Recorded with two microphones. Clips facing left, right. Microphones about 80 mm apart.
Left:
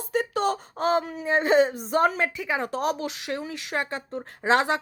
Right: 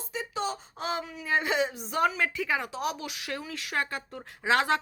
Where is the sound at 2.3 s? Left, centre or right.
Left.